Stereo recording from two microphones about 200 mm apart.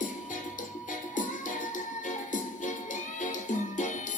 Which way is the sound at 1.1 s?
40° left (ahead or behind).